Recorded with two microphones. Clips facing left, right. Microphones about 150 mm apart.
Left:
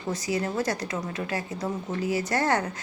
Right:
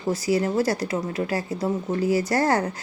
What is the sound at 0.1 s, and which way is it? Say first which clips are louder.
Speech: right 6 dB; 30° right (ahead or behind).